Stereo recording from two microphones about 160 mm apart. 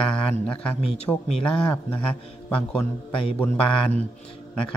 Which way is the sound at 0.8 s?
40° left (ahead or behind).